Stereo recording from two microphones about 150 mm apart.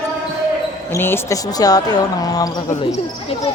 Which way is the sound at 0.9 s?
15° left (ahead or behind).